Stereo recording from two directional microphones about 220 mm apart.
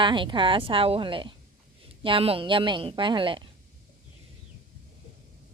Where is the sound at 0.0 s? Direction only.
20° right (ahead or behind).